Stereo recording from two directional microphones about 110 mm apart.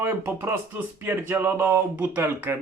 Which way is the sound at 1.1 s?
20° right (ahead or behind).